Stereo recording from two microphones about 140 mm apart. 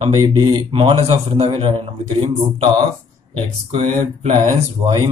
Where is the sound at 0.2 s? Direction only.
30° right (ahead or behind).